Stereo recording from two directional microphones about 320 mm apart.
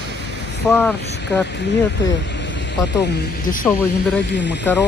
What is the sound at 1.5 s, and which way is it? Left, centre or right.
Speech, left.